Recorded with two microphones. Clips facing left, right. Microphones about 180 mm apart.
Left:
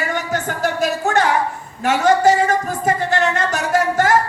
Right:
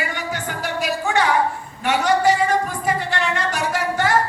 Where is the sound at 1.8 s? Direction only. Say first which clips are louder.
Left 4 dB; 45° left (ahead or behind).